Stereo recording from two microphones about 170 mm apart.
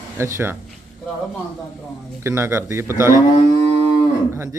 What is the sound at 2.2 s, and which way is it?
Speech, 15° right (ahead or behind).